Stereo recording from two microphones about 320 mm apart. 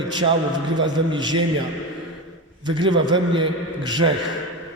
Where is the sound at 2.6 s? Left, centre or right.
Centre.